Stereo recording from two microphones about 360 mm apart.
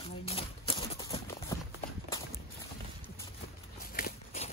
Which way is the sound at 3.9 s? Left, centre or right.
Left.